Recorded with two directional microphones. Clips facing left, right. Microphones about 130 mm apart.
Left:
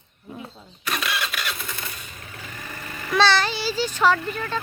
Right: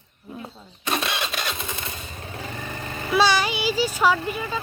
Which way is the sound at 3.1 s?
10° right (ahead or behind).